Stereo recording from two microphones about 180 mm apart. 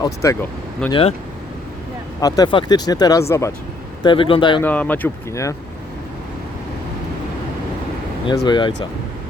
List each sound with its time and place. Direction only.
0.0 s speech: 15° left (ahead or behind)
0.9 s speech: 30° left (ahead or behind)
2.2 s speech: 20° left (ahead or behind)
4.0 s speech: 30° left (ahead or behind)
4.6 s speech: 10° left (ahead or behind)
8.4 s speech: 25° left (ahead or behind)